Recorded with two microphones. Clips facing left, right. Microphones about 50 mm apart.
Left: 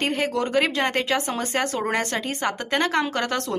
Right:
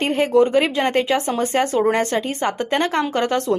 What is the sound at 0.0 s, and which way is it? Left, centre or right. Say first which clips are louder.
Speech: right 8 dB; right.